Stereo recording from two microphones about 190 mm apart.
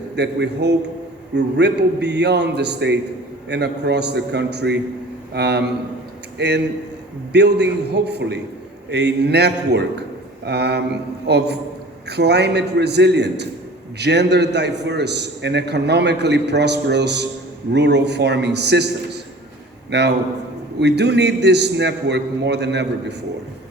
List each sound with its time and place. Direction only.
0.2 s a man's voice: 65° right (ahead or behind)